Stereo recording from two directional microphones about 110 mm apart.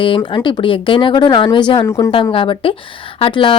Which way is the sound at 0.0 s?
50° left (ahead or behind).